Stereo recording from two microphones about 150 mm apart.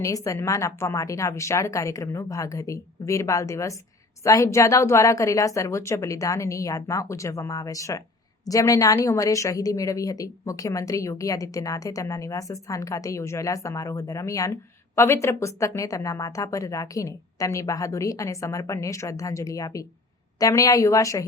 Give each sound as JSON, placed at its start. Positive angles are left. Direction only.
{"t": 0.0, "sound": "a woman's voice", "side_deg": 20}